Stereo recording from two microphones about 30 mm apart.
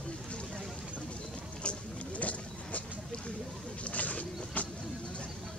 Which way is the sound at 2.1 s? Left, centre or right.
Left.